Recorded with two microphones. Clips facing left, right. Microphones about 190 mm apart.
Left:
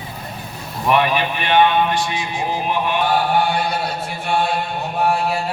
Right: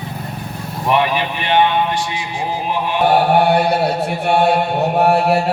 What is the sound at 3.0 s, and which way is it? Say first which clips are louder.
Chant: right 7 dB; 65° right (ahead or behind).